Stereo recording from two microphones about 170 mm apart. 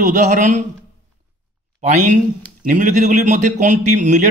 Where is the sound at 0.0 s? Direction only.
45° right (ahead or behind).